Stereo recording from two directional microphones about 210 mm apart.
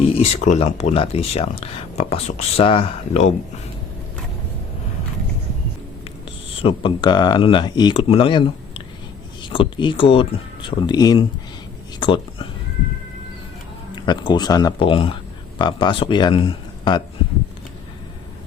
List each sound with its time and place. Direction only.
0.0 s speech: 30° left (ahead or behind)
6.6 s speech: 25° left (ahead or behind)
13.9 s speech: 20° left (ahead or behind)